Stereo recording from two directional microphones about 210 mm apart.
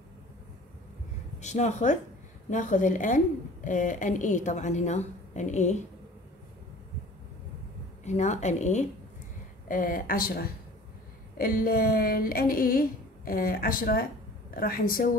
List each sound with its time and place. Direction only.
1.4 s a woman's voice: 35° left (ahead or behind)
8.0 s a woman's voice: 35° left (ahead or behind)